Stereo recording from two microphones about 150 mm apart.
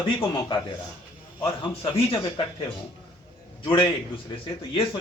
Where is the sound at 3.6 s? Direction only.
35° left (ahead or behind).